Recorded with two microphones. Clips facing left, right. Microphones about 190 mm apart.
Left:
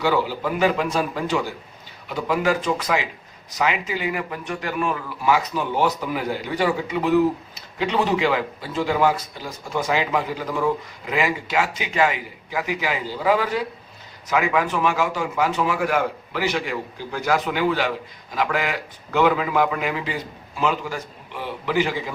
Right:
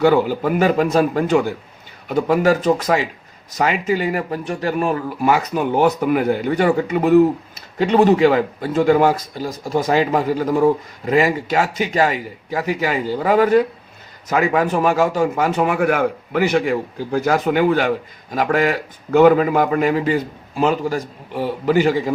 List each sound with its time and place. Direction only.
0.0 s speech: 50° right (ahead or behind)